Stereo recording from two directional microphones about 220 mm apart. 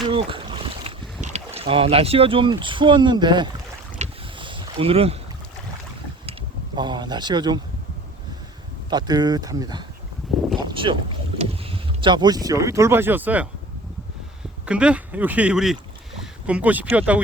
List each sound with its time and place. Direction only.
0.0 s boat: 25° right (ahead or behind)
1.5 s speech: 25° right (ahead or behind)
3.9 s boat: 25° right (ahead or behind)
6.7 s speech: 20° right (ahead or behind)
8.9 s speech: 20° right (ahead or behind)
14.7 s speech: 5° right (ahead or behind)
16.2 s a sound: 5° right (ahead or behind)
16.9 s speech: 5° right (ahead or behind)